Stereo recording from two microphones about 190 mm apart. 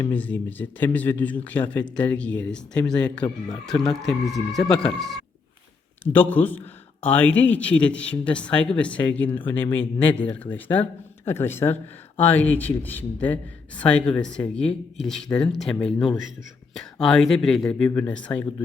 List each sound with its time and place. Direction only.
0.0 s a man's voice: 10° left (ahead or behind)